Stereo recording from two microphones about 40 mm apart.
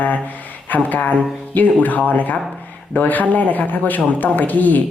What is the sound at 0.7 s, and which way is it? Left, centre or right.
Speech, left.